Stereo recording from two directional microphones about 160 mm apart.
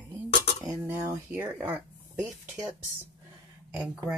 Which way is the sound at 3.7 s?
5° right (ahead or behind).